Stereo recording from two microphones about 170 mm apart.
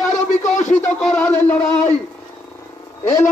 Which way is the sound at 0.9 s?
5° left (ahead or behind).